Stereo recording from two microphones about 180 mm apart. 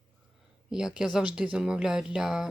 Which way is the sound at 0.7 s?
5° right (ahead or behind).